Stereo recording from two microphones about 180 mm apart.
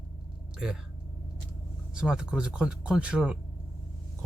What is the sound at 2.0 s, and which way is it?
Speech, 5° right (ahead or behind).